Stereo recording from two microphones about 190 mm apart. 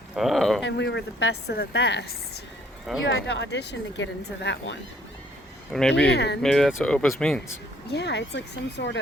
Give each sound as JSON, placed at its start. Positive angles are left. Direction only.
{"t": 0.2, "sound": "a sound", "side_deg": 0}
{"t": 0.6, "sound": "a woman's voice", "side_deg": 65}
{"t": 3.1, "sound": "speech", "side_deg": 70}
{"t": 5.7, "sound": "speech", "side_deg": 0}
{"t": 6.1, "sound": "a woman's voice", "side_deg": 60}
{"t": 6.4, "sound": "speech", "side_deg": 0}
{"t": 7.4, "sound": "a woman's voice", "side_deg": 65}